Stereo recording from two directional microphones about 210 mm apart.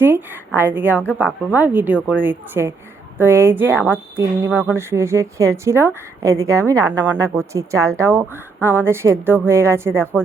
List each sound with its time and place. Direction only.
0.0 s speech: 10° right (ahead or behind)